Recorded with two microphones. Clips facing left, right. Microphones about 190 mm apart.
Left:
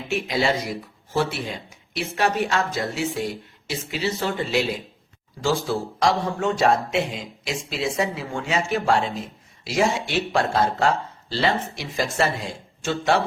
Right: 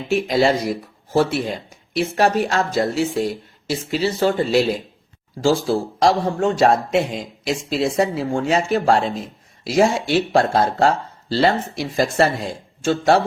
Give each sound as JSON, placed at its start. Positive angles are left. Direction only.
{"t": 0.2, "sound": "a man's voice", "side_deg": -40}